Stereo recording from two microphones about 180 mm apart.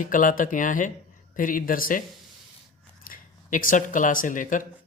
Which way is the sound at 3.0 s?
50° left (ahead or behind).